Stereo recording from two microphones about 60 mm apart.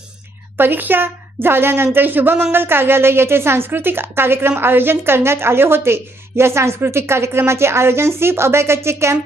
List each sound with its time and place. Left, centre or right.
0.5 s a woman's voice: right